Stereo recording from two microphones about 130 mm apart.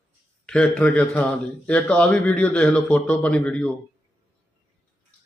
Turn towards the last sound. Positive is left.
turn(degrees=10)  # may be behind; listen again after turning